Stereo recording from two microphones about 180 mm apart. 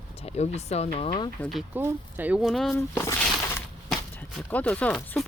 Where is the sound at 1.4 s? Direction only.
Centre (ahead or behind).